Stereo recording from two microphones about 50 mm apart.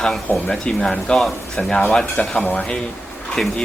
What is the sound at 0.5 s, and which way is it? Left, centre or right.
Speech, centre.